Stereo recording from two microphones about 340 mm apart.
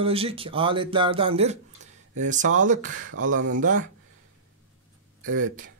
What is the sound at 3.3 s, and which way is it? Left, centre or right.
Speech, right.